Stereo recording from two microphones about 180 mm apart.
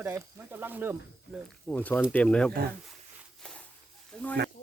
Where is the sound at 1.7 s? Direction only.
10° left (ahead or behind).